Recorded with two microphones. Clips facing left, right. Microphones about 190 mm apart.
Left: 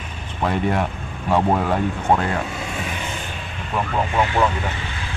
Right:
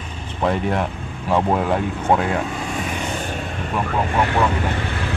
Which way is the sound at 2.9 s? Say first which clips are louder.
Right 4 dB; 40° right (ahead or behind).